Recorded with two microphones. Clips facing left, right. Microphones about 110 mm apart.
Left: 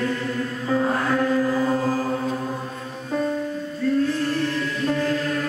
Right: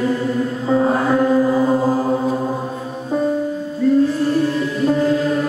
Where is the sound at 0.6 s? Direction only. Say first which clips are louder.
Right 5 dB; 20° right (ahead or behind).